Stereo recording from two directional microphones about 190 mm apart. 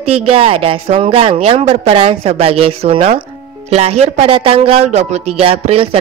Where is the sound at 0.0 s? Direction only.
30° right (ahead or behind).